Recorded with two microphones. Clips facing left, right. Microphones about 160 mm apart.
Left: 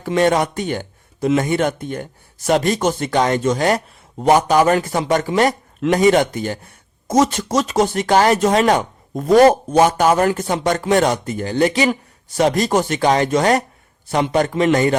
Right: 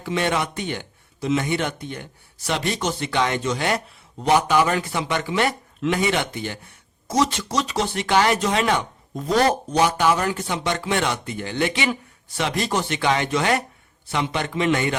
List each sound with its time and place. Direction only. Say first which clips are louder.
0.0 s speech: left 7 dB; 45° left (ahead or behind)